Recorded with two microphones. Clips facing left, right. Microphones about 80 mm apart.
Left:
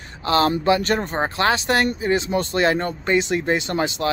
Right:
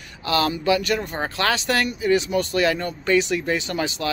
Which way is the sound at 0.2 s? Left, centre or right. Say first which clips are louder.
Left 3 dB; left.